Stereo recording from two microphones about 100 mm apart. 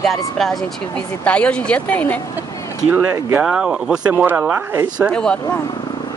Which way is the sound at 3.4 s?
5° right (ahead or behind).